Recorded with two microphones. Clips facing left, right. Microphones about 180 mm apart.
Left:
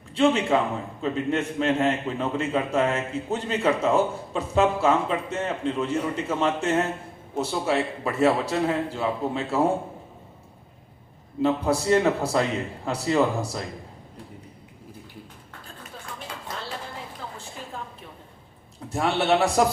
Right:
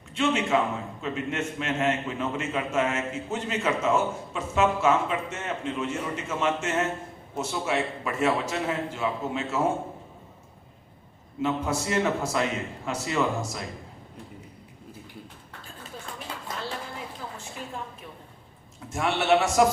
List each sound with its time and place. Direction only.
0.1 s a man's voice: 35° left (ahead or behind)
11.4 s a man's voice: 35° left (ahead or behind)
18.9 s a man's voice: 35° left (ahead or behind)